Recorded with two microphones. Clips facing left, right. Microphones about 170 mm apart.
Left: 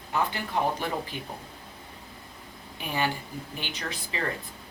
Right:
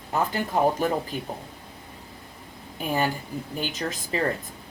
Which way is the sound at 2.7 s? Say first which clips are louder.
Right 4 dB; 45° right (ahead or behind).